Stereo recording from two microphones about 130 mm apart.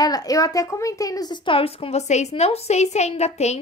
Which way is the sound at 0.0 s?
30° left (ahead or behind).